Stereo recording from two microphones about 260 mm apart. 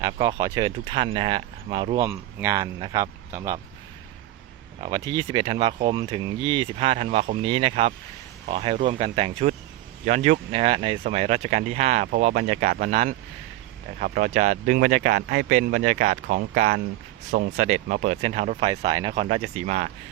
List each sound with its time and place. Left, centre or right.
0.0 s speech: centre
4.8 s speech: centre